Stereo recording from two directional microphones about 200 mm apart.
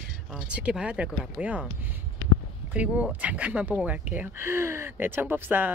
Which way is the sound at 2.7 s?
5° right (ahead or behind).